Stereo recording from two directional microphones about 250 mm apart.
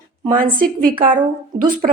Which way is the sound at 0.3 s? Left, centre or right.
Right.